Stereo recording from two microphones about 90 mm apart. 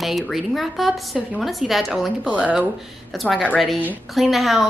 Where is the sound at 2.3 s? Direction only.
15° right (ahead or behind).